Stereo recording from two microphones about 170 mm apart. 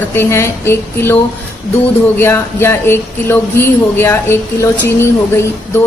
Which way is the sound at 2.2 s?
15° left (ahead or behind).